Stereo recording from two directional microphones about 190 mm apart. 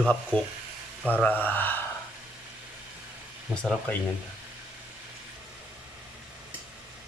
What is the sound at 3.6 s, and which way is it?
Speech, 5° left (ahead or behind).